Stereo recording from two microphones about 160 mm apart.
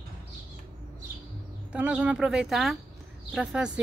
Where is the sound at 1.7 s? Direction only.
10° right (ahead or behind).